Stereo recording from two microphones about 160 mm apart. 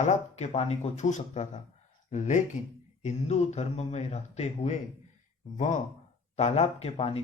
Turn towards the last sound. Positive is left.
turn(degrees=40)  # may be behind; listen again after turning